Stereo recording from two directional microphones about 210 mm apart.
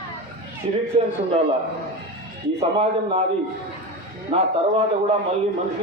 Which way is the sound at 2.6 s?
30° right (ahead or behind).